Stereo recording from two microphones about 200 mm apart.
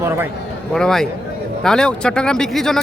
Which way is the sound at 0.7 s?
Centre (ahead or behind).